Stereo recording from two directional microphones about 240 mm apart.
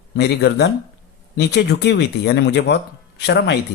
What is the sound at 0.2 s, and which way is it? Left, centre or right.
Speech, left.